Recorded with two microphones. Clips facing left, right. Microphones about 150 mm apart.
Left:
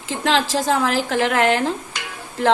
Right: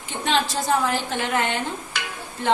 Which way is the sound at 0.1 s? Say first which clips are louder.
Left 4 dB; 90° left.